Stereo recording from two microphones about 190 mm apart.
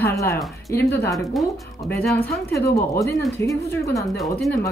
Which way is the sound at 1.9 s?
10° left (ahead or behind).